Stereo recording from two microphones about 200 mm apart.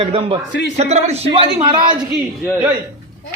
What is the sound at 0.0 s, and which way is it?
A man's voice, 30° right (ahead or behind).